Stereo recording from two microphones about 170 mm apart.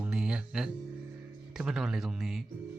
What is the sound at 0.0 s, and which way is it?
Music, 5° right (ahead or behind).